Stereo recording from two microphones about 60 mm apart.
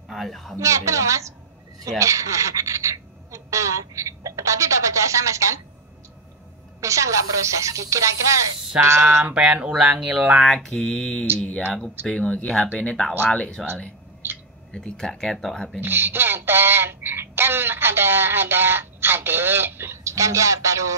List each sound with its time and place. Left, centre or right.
0.1 s a woman's voice: centre
0.6 s speech: right
6.8 s speech: right
9.3 s speech: centre
10.4 s speech: centre
14.2 s a sound: right
14.7 s speech: centre
15.8 s speech: right
20.0 s speech: right